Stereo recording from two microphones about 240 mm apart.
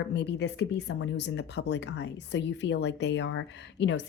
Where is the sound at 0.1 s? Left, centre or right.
Left.